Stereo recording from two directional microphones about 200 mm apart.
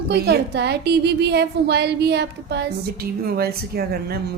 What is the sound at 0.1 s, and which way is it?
A woman's voice, 55° right (ahead or behind).